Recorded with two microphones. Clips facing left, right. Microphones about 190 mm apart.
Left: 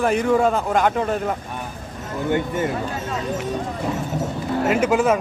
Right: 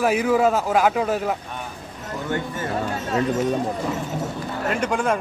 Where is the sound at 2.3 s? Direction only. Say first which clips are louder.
Left 6 dB; 20° left (ahead or behind).